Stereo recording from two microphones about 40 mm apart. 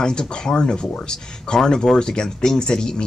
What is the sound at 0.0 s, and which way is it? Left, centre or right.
Speech, left.